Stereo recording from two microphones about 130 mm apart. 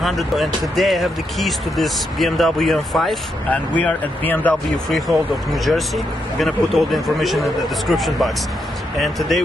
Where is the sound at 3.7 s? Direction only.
10° left (ahead or behind).